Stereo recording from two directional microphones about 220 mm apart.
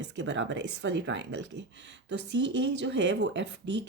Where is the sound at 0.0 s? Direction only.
50° right (ahead or behind).